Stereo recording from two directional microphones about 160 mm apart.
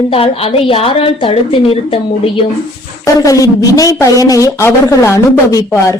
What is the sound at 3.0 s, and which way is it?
A woman's voice, 20° left (ahead or behind).